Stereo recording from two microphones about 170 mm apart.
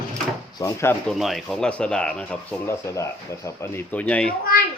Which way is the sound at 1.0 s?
Centre (ahead or behind).